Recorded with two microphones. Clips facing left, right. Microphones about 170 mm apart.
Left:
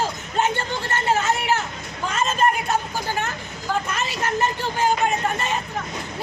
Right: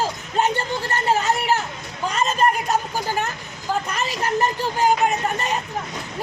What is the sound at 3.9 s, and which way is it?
Speech, 35° right (ahead or behind).